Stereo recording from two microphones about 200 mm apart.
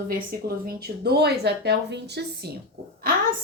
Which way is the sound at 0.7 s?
50° right (ahead or behind).